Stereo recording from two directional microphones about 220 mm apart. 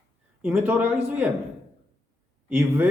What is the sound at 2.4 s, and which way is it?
Speech, 10° right (ahead or behind).